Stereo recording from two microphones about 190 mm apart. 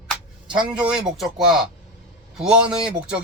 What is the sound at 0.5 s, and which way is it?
A man's voice, 5° right (ahead or behind).